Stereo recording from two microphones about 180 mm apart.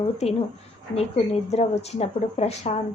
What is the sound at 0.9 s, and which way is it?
Speech, 35° left (ahead or behind).